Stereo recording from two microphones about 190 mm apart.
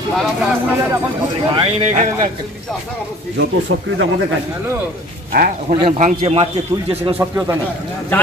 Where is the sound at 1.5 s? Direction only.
35° right (ahead or behind).